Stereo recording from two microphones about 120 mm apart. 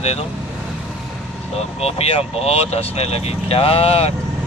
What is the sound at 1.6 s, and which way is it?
Speech, 60° left (ahead or behind).